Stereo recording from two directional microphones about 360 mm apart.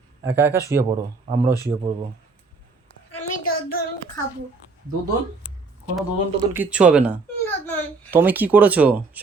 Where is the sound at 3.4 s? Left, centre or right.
Left.